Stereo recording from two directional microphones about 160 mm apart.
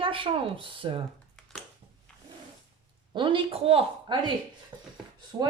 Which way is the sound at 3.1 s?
30° right (ahead or behind).